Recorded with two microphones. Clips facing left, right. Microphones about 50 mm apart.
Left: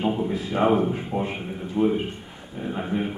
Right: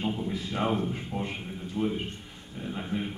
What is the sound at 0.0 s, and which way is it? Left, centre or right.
Speech, left.